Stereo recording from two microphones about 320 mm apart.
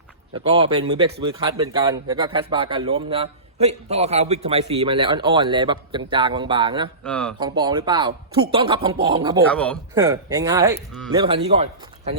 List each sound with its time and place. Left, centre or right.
0.4 s speech: centre
7.0 s speech: centre
7.3 s speech: centre
9.5 s speech: centre
9.9 s speech: centre